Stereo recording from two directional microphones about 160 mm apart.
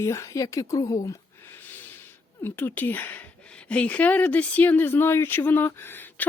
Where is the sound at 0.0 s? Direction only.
20° left (ahead or behind).